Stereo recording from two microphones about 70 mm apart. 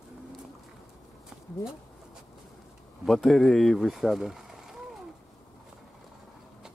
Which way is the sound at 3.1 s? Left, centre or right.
Centre.